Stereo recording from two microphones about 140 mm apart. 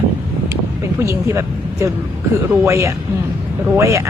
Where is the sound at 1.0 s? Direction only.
20° right (ahead or behind).